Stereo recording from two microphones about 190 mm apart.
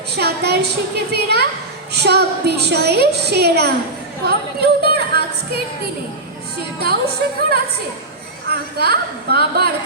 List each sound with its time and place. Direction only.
0.1 s a woman's voice: 60° right (ahead or behind)
6.7 s a woman's voice: 55° right (ahead or behind)